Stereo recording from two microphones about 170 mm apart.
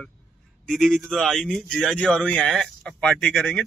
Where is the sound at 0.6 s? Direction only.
Centre (ahead or behind).